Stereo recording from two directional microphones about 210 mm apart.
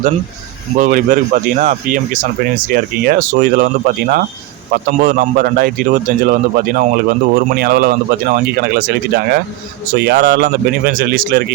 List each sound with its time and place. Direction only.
0.8 s a man's voice: 40° right (ahead or behind)